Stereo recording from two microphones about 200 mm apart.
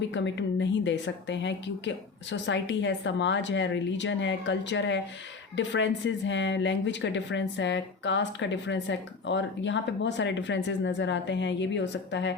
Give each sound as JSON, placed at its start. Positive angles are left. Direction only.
{"t": 0.1, "sound": "speech", "side_deg": 65}